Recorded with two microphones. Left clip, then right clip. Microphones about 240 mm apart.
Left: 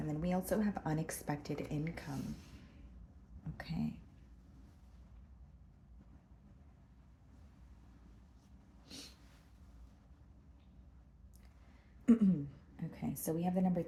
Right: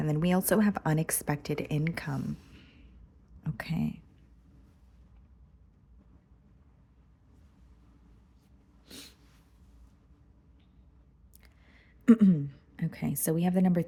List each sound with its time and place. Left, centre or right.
0.0 s speech: right
3.4 s speech: right
8.9 s a sound: right
12.0 s a woman's voice: right